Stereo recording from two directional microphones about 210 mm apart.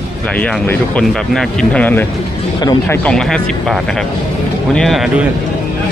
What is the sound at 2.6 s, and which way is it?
Speech, 20° left (ahead or behind).